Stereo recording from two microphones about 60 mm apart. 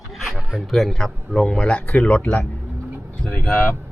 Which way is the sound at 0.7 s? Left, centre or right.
Centre.